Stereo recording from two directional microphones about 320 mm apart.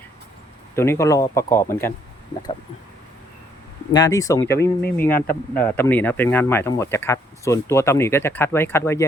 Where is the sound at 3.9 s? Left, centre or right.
Centre.